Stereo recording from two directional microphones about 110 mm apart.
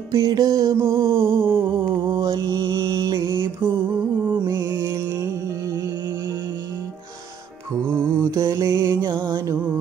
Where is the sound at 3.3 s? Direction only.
20° right (ahead or behind).